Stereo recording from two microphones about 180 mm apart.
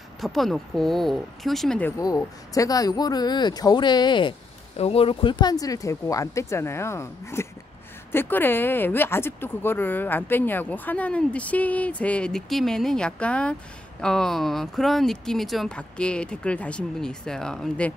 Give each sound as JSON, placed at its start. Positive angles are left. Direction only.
{"t": 0.2, "sound": "speech", "side_deg": 0}